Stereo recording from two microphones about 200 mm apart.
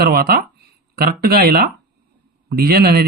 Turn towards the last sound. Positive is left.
turn(degrees=-50)  # may be behind; listen again after turning